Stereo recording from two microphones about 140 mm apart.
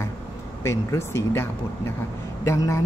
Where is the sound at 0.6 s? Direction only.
20° left (ahead or behind).